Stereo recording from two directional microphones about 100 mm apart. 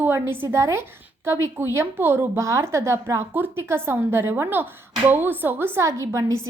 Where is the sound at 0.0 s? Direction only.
20° right (ahead or behind).